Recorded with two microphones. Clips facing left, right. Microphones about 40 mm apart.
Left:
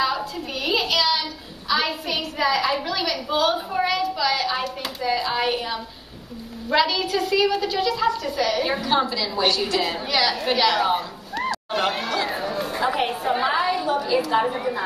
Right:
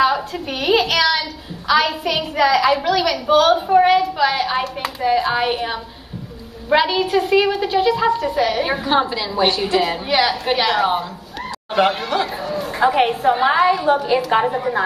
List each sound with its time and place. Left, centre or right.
0.0 s a woman's voice: right
2.3 s a woman's voice: right
3.6 s a woman's voice: right